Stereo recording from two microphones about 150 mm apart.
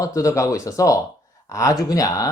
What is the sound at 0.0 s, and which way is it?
Speech, 20° left (ahead or behind).